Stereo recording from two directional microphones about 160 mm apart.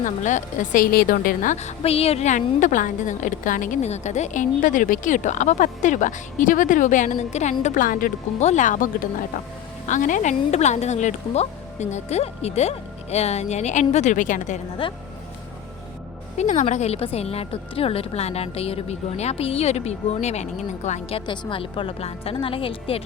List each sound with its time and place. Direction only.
0.0 s a woman's voice: 50° left (ahead or behind)
14.8 s speech: 35° left (ahead or behind)
16.4 s speech: 45° left (ahead or behind)